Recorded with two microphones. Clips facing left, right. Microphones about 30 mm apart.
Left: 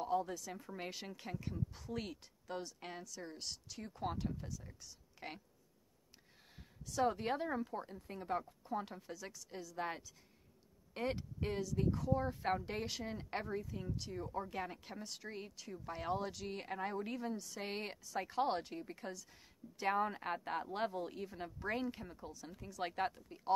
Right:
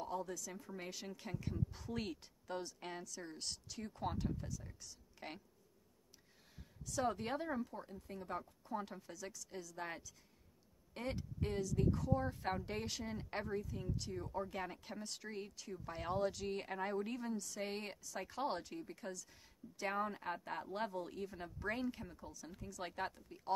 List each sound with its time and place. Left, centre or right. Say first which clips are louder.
0.0 s a sound: left 6 dB; centre
0.3 s speech: left 1 dB; left
1.0 s a woman's voice: even; centre
6.9 s speech: left 3 dB; centre
7.6 s speech: left 4 dB; left